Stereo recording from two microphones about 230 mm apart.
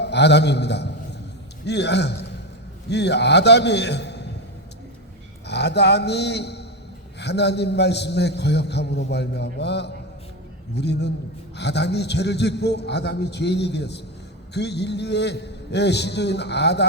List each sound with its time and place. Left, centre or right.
0.0 s a sound: left
1.6 s a man's voice: left
5.5 s a man's voice: left